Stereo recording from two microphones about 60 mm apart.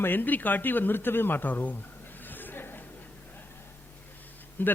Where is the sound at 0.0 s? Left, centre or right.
Left.